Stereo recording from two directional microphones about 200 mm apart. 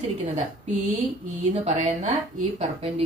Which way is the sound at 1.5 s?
35° right (ahead or behind).